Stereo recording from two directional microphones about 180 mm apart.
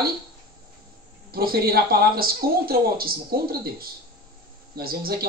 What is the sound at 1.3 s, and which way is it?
Speech, 55° right (ahead or behind).